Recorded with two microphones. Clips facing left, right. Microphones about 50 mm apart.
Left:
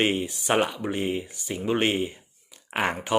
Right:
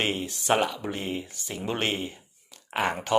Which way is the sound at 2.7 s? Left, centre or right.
Left.